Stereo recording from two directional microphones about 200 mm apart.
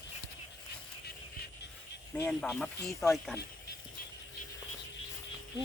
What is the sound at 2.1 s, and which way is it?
Speech, 10° left (ahead or behind).